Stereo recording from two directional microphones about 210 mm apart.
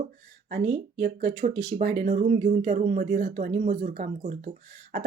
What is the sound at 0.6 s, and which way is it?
Speech, 35° right (ahead or behind).